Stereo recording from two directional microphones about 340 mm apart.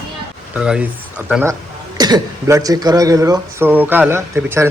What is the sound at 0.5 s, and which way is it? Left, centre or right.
Speech, centre.